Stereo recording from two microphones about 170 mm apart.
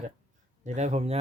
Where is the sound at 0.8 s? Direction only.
40° right (ahead or behind).